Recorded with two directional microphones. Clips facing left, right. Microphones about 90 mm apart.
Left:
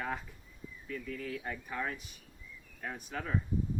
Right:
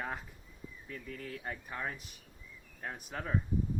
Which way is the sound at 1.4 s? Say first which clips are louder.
Left 2 dB; 10° right (ahead or behind).